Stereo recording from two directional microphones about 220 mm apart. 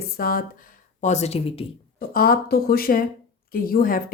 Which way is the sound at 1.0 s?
30° left (ahead or behind).